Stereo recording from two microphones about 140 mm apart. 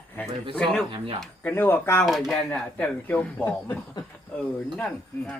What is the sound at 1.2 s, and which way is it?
Speech, 10° left (ahead or behind).